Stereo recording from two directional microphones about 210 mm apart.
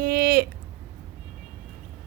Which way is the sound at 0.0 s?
45° right (ahead or behind).